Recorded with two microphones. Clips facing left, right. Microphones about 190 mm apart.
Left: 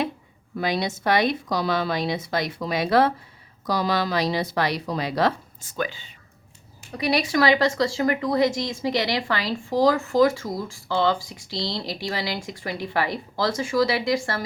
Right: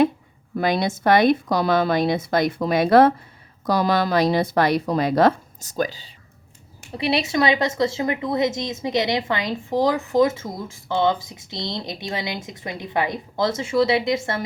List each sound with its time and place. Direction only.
0.5 s a woman's voice: 50° right (ahead or behind)
6.9 s speech: 25° right (ahead or behind)